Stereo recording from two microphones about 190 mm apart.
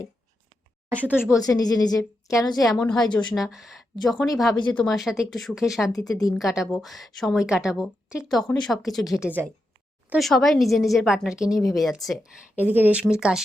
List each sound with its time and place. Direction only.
1.1 s a woman's voice: 15° left (ahead or behind)
2.6 s a woman's voice: 5° left (ahead or behind)
5.9 s a woman's voice: 20° left (ahead or behind)
6.4 s a woman's voice: centre (ahead or behind)